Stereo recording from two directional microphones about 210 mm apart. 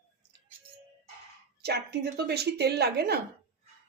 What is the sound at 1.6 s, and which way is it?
Speech, 50° right (ahead or behind).